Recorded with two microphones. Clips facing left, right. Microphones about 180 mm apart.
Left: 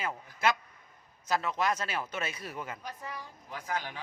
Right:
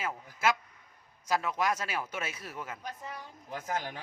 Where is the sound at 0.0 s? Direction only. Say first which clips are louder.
Even; 5° right (ahead or behind).